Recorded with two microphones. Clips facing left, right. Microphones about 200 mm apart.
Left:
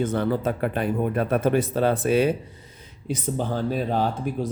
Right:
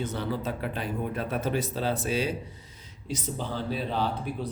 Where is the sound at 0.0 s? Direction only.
55° left (ahead or behind).